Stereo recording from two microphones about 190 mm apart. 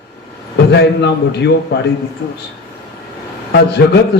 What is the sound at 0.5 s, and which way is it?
A man's voice, 65° left (ahead or behind).